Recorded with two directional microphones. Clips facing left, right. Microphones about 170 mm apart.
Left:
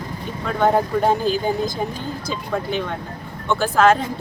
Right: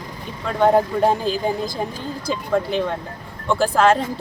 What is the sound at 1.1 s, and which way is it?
Speech, centre (ahead or behind).